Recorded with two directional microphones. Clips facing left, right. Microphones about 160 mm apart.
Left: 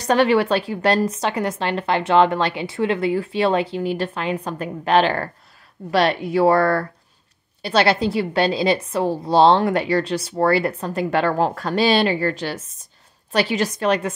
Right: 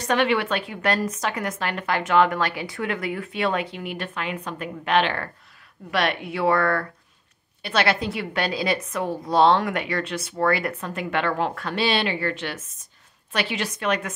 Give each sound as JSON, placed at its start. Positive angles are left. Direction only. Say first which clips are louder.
{"t": 0.0, "sound": "a woman's voice", "louder": "left 5 dB", "side_deg": 35}